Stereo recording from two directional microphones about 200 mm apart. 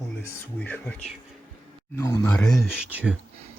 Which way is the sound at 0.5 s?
10° left (ahead or behind).